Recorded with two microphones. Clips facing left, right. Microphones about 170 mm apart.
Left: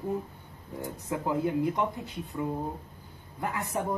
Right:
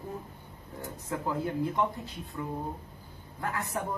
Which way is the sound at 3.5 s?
20° left (ahead or behind).